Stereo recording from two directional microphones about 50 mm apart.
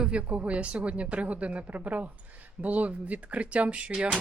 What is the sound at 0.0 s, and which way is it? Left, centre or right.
Speech, right.